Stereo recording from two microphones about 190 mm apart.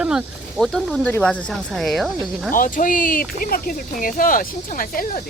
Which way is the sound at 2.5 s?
45° left (ahead or behind).